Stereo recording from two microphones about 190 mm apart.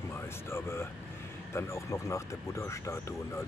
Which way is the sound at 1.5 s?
15° left (ahead or behind).